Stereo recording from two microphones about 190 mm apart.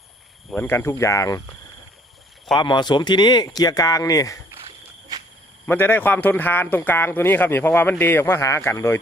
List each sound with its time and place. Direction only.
0.5 s speech: 10° left (ahead or behind)
2.5 s speech: 25° left (ahead or behind)
5.1 s cricket: 20° right (ahead or behind)
5.6 s speech: 10° left (ahead or behind)